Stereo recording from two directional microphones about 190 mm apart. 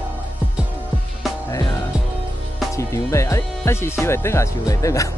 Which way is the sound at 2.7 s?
15° left (ahead or behind).